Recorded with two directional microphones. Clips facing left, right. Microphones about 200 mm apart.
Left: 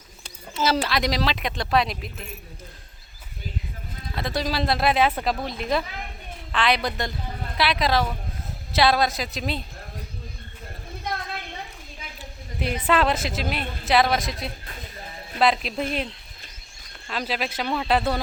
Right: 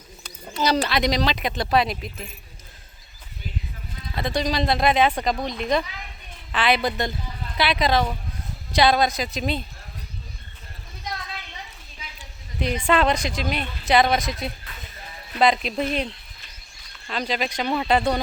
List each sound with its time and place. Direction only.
0.5 s speech: centre (ahead or behind)
4.1 s speech: centre (ahead or behind)
5.8 s a child's voice: 50° left (ahead or behind)
6.5 s speech: 5° right (ahead or behind)
11.0 s a sound: 55° left (ahead or behind)
12.5 s speech: 5° left (ahead or behind)
17.1 s speech: 5° left (ahead or behind)